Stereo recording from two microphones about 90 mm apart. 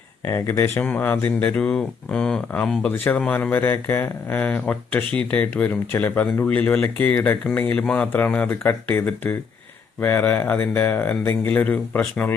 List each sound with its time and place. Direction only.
0.3 s speech: 25° left (ahead or behind)